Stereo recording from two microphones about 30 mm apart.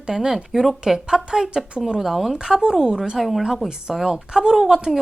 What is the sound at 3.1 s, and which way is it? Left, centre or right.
Speech, centre.